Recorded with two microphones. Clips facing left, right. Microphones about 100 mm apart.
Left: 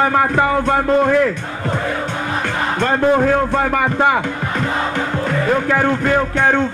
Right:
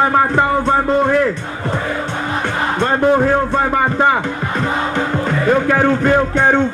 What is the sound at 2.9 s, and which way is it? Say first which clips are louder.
Speech: right 1 dB; 15° right (ahead or behind).